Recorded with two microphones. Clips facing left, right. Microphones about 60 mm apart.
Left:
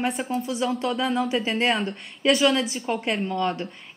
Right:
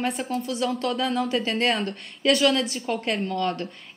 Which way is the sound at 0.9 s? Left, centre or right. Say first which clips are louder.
Left 1 dB; centre.